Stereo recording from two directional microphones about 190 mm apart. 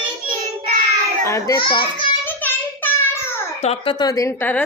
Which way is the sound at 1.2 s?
15° left (ahead or behind).